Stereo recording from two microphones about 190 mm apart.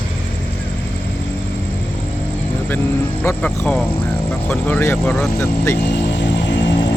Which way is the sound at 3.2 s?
10° left (ahead or behind).